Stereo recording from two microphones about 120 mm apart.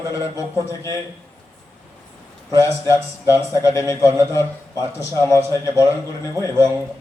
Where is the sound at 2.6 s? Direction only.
25° left (ahead or behind).